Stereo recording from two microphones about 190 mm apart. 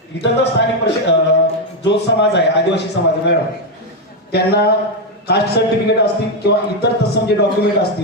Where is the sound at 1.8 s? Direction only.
65° left (ahead or behind).